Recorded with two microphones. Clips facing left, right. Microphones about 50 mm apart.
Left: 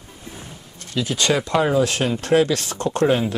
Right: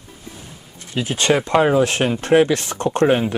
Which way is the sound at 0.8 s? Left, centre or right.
Right.